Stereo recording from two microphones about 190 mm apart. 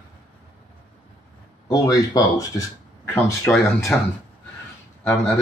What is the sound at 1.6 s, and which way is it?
Speech, 20° left (ahead or behind).